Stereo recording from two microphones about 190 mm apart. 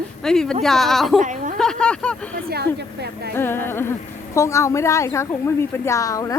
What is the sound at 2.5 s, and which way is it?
Speech, 60° right (ahead or behind).